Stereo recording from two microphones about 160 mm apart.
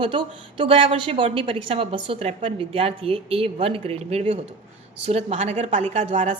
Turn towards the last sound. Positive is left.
turn(degrees=-45)  # may be behind; listen again after turning